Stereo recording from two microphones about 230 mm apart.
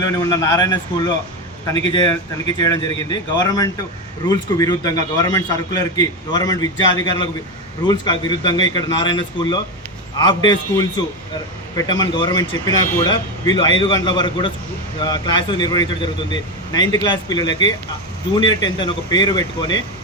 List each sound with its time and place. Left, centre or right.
0.0 s a man's voice: centre